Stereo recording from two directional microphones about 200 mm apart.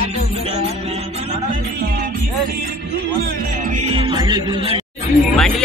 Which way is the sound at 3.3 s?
40° right (ahead or behind).